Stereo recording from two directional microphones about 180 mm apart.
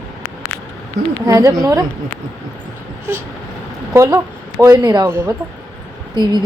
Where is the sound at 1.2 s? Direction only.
20° right (ahead or behind).